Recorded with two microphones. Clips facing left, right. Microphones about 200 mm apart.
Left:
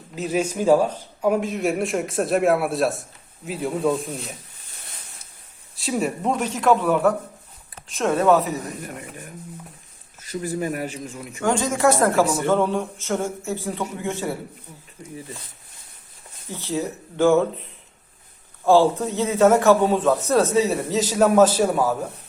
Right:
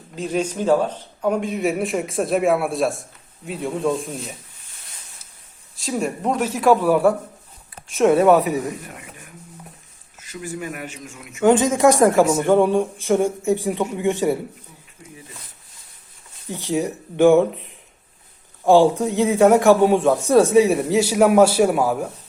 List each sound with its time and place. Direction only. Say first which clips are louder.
0.2 s speech: even; 10° left (ahead or behind)
5.7 s speech: even; centre (ahead or behind)
9.0 s a man's voice: left 5 dB; 45° left (ahead or behind)
11.4 s a man's voice: right 5 dB; 20° right (ahead or behind)
16.5 s a man's voice: right 4 dB; 15° right (ahead or behind)